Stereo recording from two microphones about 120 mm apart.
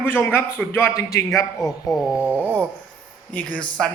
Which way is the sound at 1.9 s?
10° right (ahead or behind).